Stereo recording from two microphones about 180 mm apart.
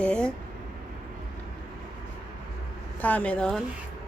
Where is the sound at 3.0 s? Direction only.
10° left (ahead or behind).